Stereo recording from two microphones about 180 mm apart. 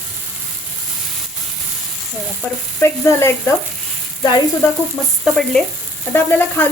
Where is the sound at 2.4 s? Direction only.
15° left (ahead or behind).